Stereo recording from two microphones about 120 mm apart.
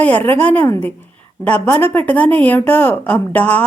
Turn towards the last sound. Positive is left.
turn(degrees=15)  # may be behind; listen again after turning